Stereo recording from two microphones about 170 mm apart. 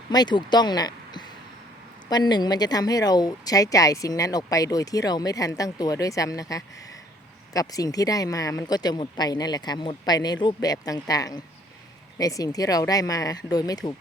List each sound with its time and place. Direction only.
0.1 s a woman's voice: 25° left (ahead or behind)